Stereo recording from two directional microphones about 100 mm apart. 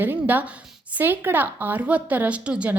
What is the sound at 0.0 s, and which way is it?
A woman's voice, 20° right (ahead or behind).